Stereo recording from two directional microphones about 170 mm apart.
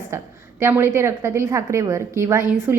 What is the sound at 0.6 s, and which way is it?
A woman's voice, 15° right (ahead or behind).